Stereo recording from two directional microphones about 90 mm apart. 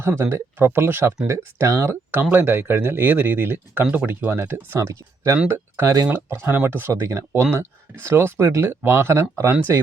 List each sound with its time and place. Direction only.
0.0 s speech: 30° right (ahead or behind)
4.8 s speech: 35° right (ahead or behind)